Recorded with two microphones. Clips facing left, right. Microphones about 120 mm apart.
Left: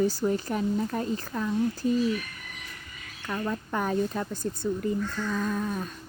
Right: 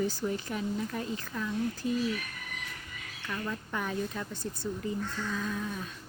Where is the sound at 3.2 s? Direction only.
50° left (ahead or behind).